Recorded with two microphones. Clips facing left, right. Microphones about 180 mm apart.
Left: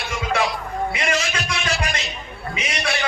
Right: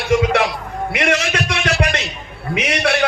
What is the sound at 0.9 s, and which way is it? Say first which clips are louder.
Music: right 5 dB; 70° right (ahead or behind).